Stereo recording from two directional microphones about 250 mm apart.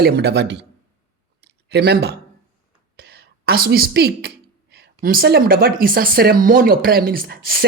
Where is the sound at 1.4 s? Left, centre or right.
Right.